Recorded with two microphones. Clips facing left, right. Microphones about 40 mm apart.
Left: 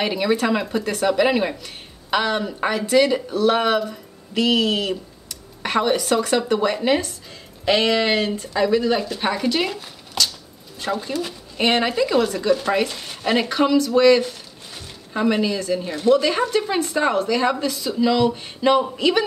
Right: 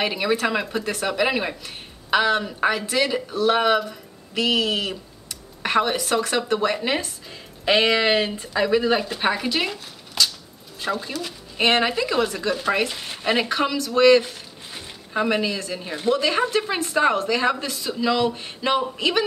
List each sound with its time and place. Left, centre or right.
0.0 s speech: centre
9.8 s a sound: centre
10.8 s speech: centre